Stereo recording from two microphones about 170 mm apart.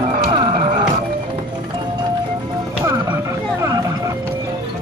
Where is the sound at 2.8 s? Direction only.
15° right (ahead or behind).